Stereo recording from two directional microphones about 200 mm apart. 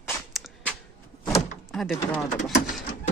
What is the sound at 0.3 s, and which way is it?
Walk, centre (ahead or behind).